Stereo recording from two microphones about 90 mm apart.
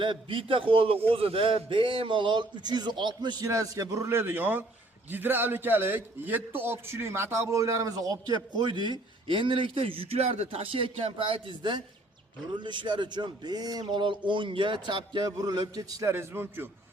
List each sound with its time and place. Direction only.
0.0 s a man's voice: 70° right (ahead or behind); by 13.8 s 45° right (ahead or behind)
13.8 s a man's voice: 65° right (ahead or behind); by 16.0 s 45° right (ahead or behind)
16.0 s a man's voice: 25° right (ahead or behind)